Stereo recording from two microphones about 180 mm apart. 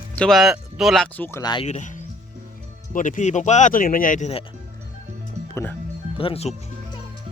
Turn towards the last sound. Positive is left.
turn(degrees=35)  # may be behind; listen again after turning